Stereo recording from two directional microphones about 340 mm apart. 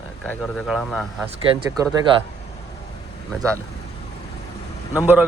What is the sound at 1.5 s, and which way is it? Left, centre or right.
Speech, centre.